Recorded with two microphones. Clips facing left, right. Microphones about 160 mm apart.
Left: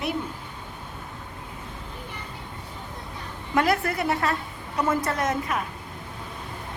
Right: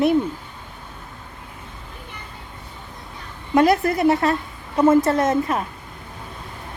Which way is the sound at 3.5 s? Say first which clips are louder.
Right 7 dB; 20° right (ahead or behind).